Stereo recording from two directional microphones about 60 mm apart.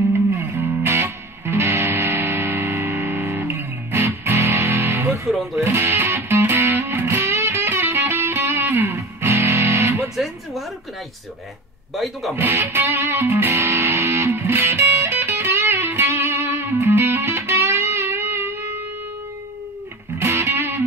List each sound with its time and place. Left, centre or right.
0.1 s music: right
5.3 s speech: centre
5.6 s music: right
10.1 s music: centre
11.9 s speech: centre
12.4 s music: right
20.2 s music: right